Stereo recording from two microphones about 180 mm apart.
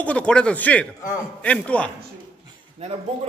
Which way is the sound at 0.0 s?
5° left (ahead or behind).